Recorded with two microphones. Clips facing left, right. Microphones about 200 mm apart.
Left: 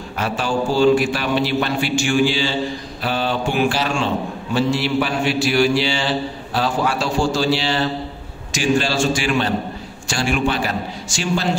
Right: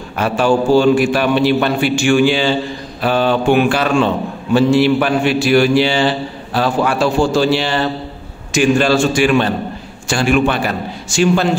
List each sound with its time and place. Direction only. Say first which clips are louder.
0.2 s a man's voice: right 7 dB; 55° right (ahead or behind)